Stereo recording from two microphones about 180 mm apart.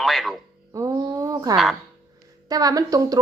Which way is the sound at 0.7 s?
20° right (ahead or behind).